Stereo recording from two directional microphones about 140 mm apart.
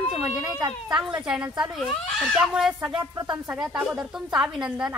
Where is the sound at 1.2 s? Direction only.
5° right (ahead or behind).